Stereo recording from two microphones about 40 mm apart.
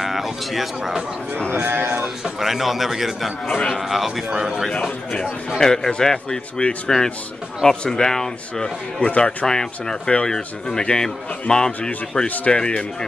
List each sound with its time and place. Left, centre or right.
0.0 s a man's voice: centre
2.4 s a man's voice: centre
5.6 s a man's voice: centre
9.0 s speech: left
9.5 s a man's voice: centre